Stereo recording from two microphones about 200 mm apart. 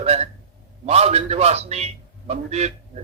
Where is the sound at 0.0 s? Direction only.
30° right (ahead or behind).